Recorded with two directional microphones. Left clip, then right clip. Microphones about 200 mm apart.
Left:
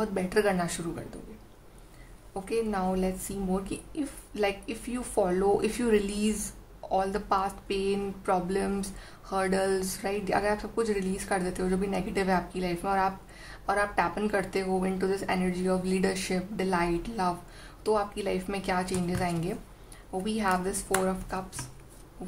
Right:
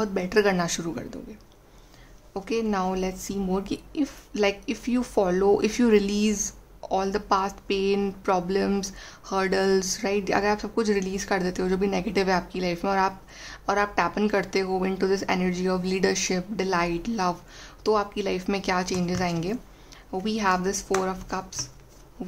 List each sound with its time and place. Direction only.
0.0 s speech: 40° right (ahead or behind)
2.4 s speech: 40° right (ahead or behind)